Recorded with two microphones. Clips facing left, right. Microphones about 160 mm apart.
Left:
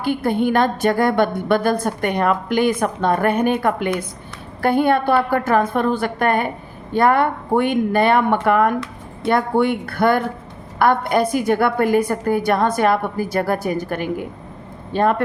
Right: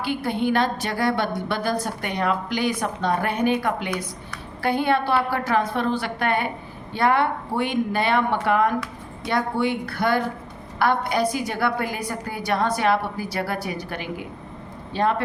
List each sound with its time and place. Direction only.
0.0 s a woman's voice: 50° left (ahead or behind)